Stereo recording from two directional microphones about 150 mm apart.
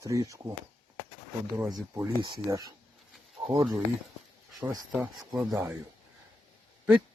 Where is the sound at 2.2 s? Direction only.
25° right (ahead or behind).